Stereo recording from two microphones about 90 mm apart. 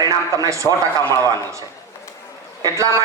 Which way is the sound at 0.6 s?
30° left (ahead or behind).